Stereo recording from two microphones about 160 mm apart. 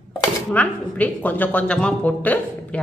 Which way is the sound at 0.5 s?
10° left (ahead or behind).